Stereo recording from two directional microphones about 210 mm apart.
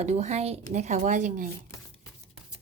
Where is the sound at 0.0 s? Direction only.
30° right (ahead or behind).